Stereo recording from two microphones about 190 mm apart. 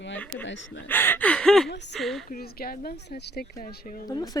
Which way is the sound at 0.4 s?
75° left (ahead or behind).